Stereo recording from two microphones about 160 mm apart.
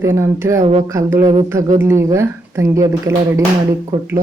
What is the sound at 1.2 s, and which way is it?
Speech, 35° right (ahead or behind).